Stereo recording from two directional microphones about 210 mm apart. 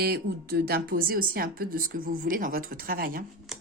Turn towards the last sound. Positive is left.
turn(degrees=-45)  # may be behind; listen again after turning